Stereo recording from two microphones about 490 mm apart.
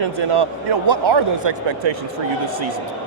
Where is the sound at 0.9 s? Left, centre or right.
Right.